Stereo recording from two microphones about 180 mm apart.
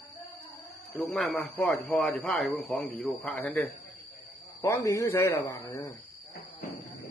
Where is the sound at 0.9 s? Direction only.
Centre (ahead or behind).